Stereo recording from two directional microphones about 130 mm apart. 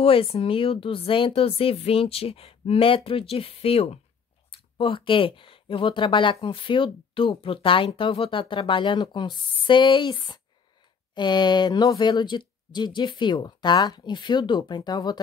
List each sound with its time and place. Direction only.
0.0 s speech: 45° left (ahead or behind); by 15.1 s 30° left (ahead or behind)